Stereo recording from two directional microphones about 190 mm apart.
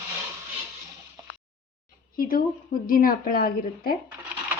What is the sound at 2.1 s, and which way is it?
A woman's voice, 50° left (ahead or behind).